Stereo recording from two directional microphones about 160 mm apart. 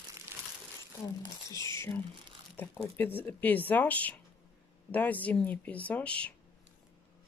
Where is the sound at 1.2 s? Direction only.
20° left (ahead or behind).